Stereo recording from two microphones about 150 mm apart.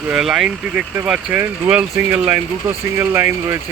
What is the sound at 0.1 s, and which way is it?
Speech, 5° right (ahead or behind).